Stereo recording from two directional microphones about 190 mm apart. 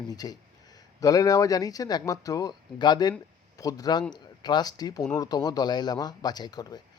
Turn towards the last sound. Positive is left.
turn(degrees=20)  # may be behind; listen again after turning